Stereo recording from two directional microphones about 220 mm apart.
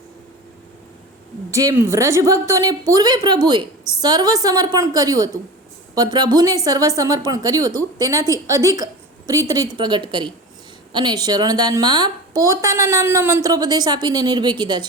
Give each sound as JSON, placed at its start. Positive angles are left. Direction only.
{"t": 1.5, "sound": "a woman's voice", "side_deg": -15}